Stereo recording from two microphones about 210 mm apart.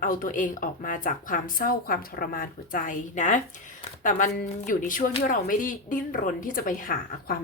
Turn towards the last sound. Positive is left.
turn(degrees=40)  # may be behind; listen again after turning